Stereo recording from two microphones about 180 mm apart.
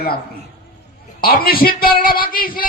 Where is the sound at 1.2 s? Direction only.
55° left (ahead or behind).